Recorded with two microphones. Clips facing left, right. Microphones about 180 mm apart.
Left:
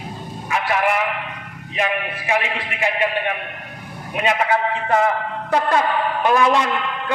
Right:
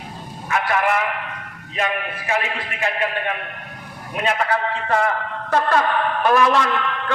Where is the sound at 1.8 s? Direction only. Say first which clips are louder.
Left 1 dB; 15° left (ahead or behind).